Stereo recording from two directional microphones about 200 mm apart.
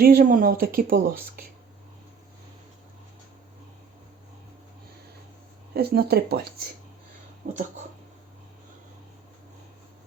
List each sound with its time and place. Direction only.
0.0 s speech: 45° right (ahead or behind)
5.7 s speech: 50° right (ahead or behind)
7.4 s speech: 35° right (ahead or behind)